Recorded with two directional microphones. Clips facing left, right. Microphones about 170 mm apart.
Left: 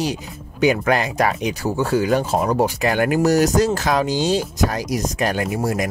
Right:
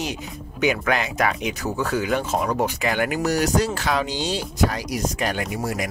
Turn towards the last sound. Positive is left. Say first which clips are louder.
# left 5 dB
turn(degrees=45)  # may be behind; listen again after turning